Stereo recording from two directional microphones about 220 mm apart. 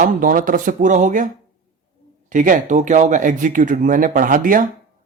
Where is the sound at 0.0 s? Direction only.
40° right (ahead or behind).